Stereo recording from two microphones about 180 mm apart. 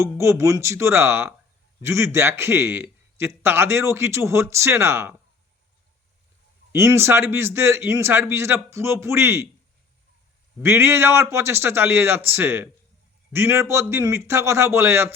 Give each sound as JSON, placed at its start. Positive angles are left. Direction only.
{"t": 0.0, "sound": "a man's voice", "side_deg": -15}
{"t": 6.7, "sound": "a man's voice", "side_deg": -15}
{"t": 10.6, "sound": "a man's voice", "side_deg": -15}